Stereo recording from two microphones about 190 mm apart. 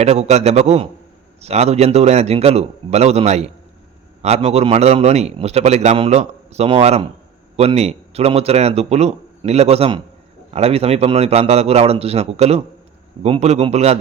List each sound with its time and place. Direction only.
0.0 s a man's voice: 35° right (ahead or behind)